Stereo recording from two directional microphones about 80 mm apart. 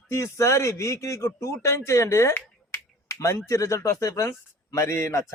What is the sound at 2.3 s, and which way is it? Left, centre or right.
Finger snapping, left.